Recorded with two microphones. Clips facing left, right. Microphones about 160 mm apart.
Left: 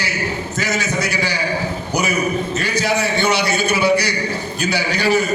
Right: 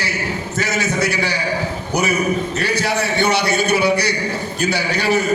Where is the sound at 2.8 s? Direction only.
60° right (ahead or behind).